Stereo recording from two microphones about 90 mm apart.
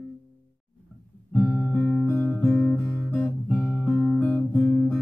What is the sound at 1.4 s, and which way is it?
Guitar, 20° left (ahead or behind).